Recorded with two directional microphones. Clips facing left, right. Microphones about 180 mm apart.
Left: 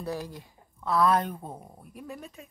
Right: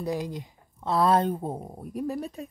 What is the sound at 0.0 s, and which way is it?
A woman's voice, 15° right (ahead or behind).